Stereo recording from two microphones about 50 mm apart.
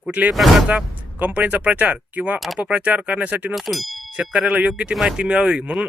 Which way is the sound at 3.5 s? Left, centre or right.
Centre.